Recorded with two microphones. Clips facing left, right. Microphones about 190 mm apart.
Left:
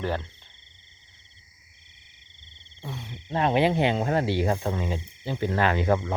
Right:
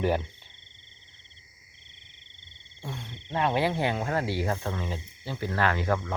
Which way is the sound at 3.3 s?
20° left (ahead or behind).